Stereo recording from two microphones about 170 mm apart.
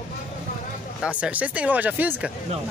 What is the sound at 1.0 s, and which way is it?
Speech, 5° right (ahead or behind).